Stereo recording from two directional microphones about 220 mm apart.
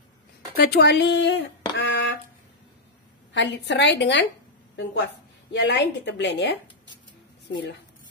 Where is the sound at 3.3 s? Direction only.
55° left (ahead or behind).